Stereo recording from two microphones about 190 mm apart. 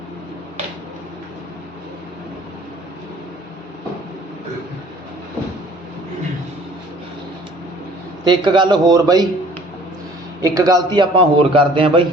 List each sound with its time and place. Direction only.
8.2 s a man's voice: 25° right (ahead or behind)
10.4 s a man's voice: 20° right (ahead or behind)